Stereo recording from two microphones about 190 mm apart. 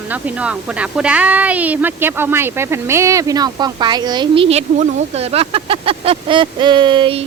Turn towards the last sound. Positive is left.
turn(degrees=-25)  # may be behind; listen again after turning